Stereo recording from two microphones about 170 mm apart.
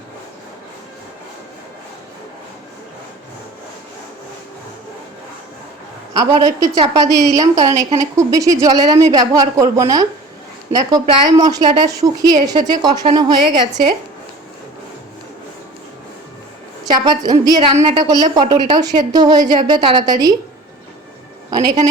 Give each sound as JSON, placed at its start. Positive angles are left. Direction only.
{"t": 6.4, "sound": "a woman's voice", "side_deg": -25}
{"t": 16.8, "sound": "a woman's voice", "side_deg": -25}
{"t": 21.6, "sound": "a woman's voice", "side_deg": -20}